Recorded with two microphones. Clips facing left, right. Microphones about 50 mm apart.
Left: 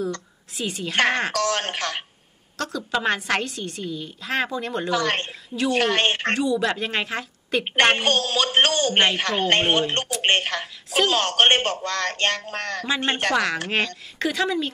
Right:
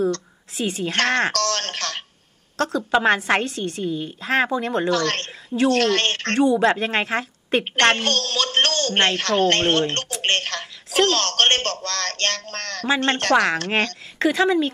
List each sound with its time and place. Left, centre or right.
0.6 s a woman's voice: right
0.9 s speech: centre
2.5 s a woman's voice: right
4.8 s speech: centre
6.3 s a woman's voice: right
7.7 s speech: centre
14.1 s a woman's voice: right